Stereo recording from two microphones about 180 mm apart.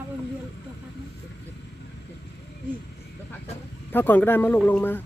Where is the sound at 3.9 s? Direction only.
10° left (ahead or behind).